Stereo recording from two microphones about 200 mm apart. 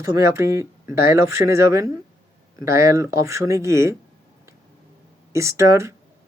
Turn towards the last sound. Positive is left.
turn(degrees=-15)  # may be behind; listen again after turning